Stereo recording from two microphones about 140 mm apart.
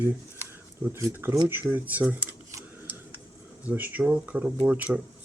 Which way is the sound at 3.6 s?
10° right (ahead or behind).